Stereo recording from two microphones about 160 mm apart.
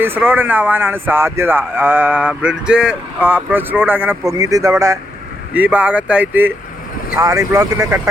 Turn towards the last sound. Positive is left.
turn(degrees=-20)  # may be behind; listen again after turning